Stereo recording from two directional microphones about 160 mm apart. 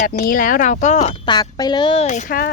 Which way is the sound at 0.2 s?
55° left (ahead or behind).